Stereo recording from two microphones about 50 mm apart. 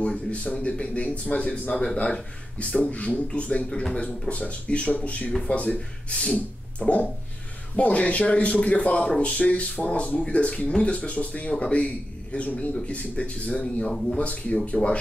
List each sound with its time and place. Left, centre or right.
0.0 s a man's voice: left